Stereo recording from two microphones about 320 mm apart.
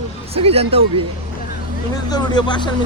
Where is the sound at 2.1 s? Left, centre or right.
Centre.